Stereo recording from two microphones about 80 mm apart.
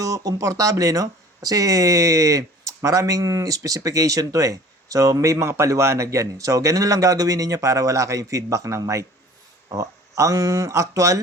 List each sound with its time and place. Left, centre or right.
0.0 s speech: right